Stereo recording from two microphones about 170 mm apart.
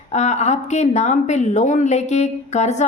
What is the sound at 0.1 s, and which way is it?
Speech, 40° left (ahead or behind).